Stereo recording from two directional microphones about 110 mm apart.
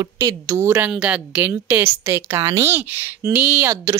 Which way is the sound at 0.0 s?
35° right (ahead or behind).